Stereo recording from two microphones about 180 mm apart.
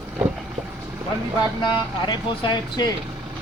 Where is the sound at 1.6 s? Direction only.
25° left (ahead or behind).